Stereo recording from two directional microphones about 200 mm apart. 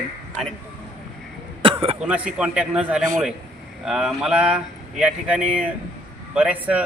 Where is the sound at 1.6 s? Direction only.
25° right (ahead or behind).